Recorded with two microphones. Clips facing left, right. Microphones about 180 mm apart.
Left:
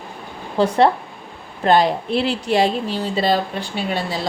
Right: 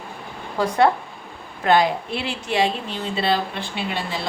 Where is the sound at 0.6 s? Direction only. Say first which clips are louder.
Left 3 dB; 30° left (ahead or behind).